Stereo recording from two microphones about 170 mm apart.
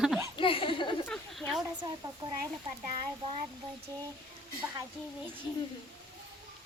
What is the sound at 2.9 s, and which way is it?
Speech, 35° right (ahead or behind).